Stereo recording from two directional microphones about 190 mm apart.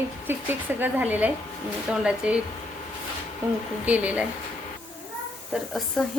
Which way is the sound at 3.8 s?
10° right (ahead or behind).